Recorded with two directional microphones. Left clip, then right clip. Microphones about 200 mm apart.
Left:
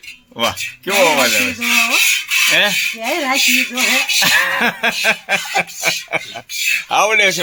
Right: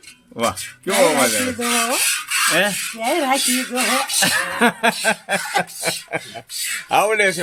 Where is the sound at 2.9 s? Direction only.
15° right (ahead or behind).